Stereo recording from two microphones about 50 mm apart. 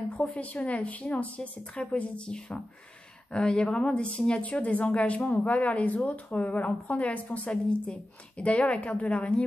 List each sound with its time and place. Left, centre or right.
0.2 s speech: left